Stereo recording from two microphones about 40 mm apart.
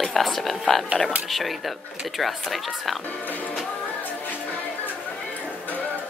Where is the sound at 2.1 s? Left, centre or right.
Centre.